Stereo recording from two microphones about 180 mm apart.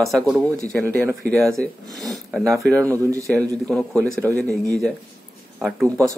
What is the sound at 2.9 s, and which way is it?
Speech, 15° right (ahead or behind).